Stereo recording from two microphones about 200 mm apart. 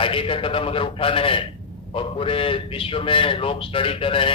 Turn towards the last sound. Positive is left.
turn(degrees=25)  # may be behind; listen again after turning